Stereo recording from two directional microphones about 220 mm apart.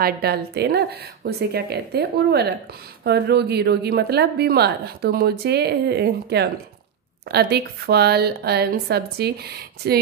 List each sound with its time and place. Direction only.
0.0 s a woman's voice: 45° right (ahead or behind)